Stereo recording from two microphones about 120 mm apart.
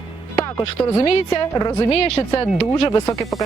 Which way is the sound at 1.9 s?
55° left (ahead or behind).